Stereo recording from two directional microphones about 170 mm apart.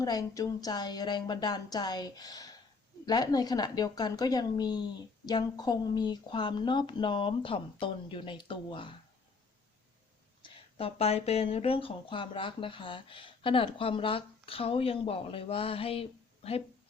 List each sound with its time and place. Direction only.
0.0 s a woman's voice: 20° left (ahead or behind)
10.4 s speech: 35° left (ahead or behind)